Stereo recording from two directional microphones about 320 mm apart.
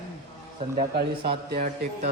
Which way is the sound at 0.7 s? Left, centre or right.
Right.